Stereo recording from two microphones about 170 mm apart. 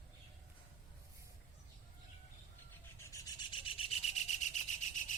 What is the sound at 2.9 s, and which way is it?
Rub, 15° left (ahead or behind).